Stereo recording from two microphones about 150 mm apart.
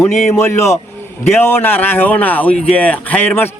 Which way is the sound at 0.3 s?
20° left (ahead or behind).